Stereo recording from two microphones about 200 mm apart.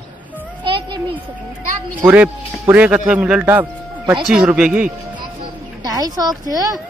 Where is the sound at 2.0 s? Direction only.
10° right (ahead or behind).